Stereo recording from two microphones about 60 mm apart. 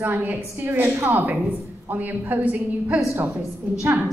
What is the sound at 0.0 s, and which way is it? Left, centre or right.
A woman's voice, right.